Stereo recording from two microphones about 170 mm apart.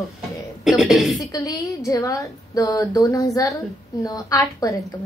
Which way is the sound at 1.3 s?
20° left (ahead or behind).